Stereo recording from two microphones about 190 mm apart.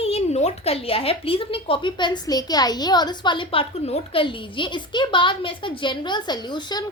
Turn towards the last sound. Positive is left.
turn(degrees=20)  # may be behind; listen again after turning